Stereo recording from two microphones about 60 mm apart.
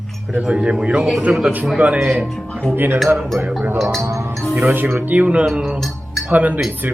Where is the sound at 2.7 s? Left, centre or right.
Right.